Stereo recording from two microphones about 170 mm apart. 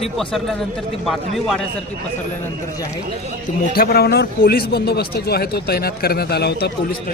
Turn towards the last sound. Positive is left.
turn(degrees=65)  # may be behind; listen again after turning